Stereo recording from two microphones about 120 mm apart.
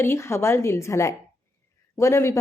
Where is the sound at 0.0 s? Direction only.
20° left (ahead or behind).